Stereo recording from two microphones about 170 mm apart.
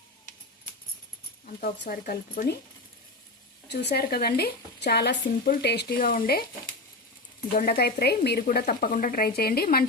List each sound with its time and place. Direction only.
1.6 s speech: 55° left (ahead or behind)
3.9 s speech: 65° left (ahead or behind)
7.6 s speech: 60° left (ahead or behind)